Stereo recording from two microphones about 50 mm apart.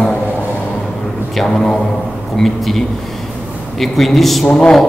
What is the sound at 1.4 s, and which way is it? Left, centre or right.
A man's voice, centre.